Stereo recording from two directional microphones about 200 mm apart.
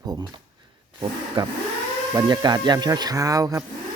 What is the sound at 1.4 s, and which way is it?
Speech, 25° right (ahead or behind).